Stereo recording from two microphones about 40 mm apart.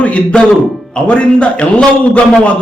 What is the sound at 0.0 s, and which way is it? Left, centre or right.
A man's voice, left.